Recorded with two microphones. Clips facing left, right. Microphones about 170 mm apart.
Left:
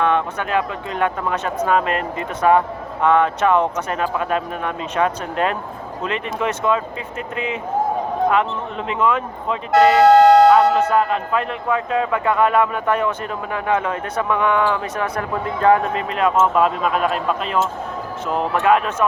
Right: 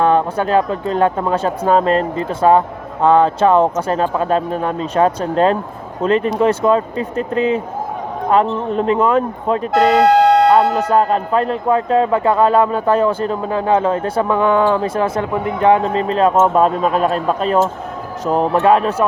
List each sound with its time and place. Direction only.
0.0 s speech: 35° right (ahead or behind)
9.7 s a sound: centre (ahead or behind)
10.8 s speech: 35° right (ahead or behind)
15.9 s speech: 35° right (ahead or behind)